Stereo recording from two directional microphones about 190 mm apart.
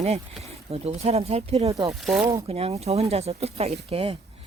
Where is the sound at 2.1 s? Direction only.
15° right (ahead or behind).